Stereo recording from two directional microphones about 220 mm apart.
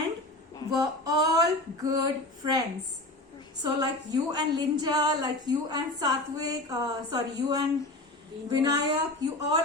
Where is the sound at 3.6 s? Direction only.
15° right (ahead or behind).